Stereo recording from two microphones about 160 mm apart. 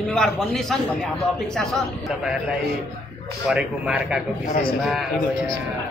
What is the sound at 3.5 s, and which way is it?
Speech, centre (ahead or behind).